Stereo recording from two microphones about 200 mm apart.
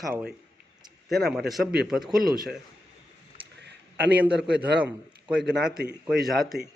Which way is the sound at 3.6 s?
60° right (ahead or behind).